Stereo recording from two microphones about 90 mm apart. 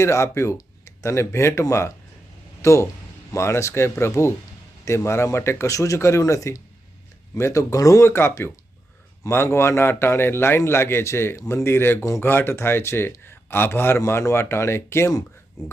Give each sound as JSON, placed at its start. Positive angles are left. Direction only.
{"t": 0.0, "sound": "speech", "side_deg": 30}